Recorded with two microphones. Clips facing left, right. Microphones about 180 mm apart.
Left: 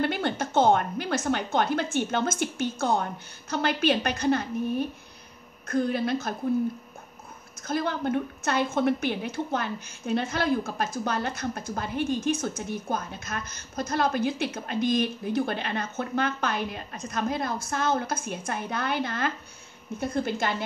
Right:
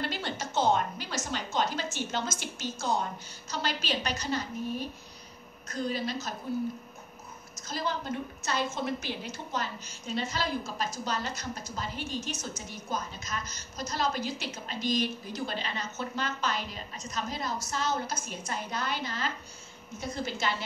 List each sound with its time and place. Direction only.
0.0 s a woman's voice: 55° left (ahead or behind)
7.5 s a woman's voice: 55° left (ahead or behind)